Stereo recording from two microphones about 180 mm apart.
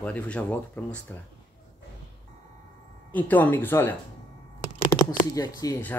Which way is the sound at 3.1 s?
10° left (ahead or behind).